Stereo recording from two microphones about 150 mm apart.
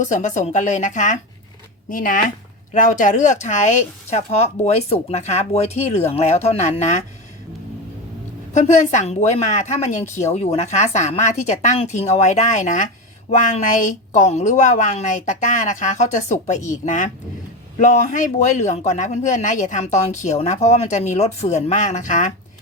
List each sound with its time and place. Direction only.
0.0 s a woman's voice: 55° left (ahead or behind)
1.9 s a woman's voice: 65° left (ahead or behind); by 7.0 s 50° left (ahead or behind)
8.5 s a man's voice: 50° left (ahead or behind)